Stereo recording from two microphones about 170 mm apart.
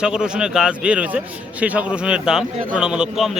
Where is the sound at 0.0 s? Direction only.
5° right (ahead or behind).